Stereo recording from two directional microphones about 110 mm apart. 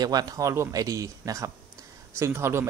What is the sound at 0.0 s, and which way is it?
Speech, 35° right (ahead or behind).